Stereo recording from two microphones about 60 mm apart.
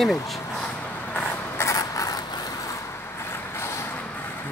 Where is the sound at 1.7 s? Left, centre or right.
Left.